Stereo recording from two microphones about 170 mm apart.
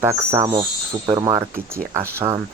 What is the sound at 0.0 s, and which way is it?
Speech, 15° right (ahead or behind).